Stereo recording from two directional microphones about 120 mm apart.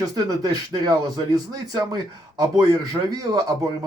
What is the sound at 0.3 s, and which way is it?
Speech, 35° right (ahead or behind).